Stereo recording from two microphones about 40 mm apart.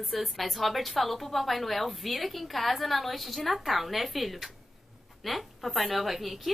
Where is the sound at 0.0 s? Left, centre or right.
Centre.